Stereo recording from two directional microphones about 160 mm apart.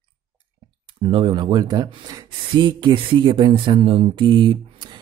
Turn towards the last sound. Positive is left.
turn(degrees=-30)  # may be behind; listen again after turning